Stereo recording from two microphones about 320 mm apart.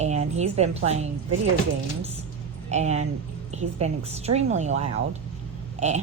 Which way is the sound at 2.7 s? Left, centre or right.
Right.